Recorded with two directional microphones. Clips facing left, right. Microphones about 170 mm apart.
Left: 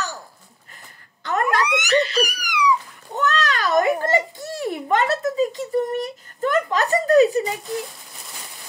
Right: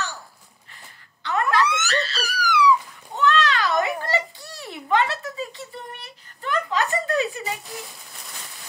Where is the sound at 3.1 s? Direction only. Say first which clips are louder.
Right 1 dB; 45° left (ahead or behind).